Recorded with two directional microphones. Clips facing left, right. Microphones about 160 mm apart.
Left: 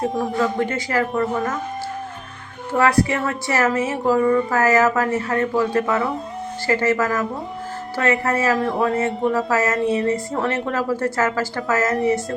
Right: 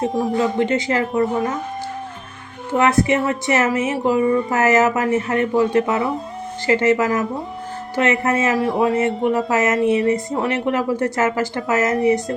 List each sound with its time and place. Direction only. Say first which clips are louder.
0.1 s speech: right 3 dB; centre (ahead or behind)
0.3 s speech: right 3 dB; 20° right (ahead or behind)
2.7 s speech: right 2 dB; 20° right (ahead or behind)
8.5 s speech: right 2 dB; 5° right (ahead or behind)
9.0 s speech: right 2 dB; 20° right (ahead or behind)